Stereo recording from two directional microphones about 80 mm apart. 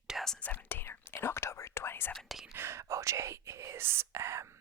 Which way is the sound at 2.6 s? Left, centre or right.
Right.